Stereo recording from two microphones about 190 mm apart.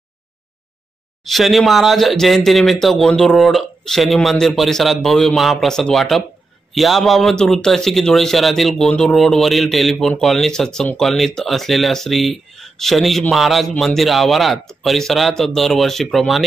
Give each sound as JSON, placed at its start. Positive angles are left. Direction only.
{"t": 1.2, "sound": "a man's voice", "side_deg": 0}